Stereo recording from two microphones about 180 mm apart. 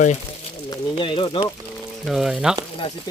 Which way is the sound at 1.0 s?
30° left (ahead or behind).